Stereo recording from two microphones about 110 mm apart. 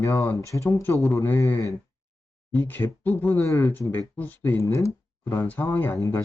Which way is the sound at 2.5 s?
15° left (ahead or behind).